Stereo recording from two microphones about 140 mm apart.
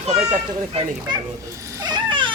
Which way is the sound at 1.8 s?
30° right (ahead or behind).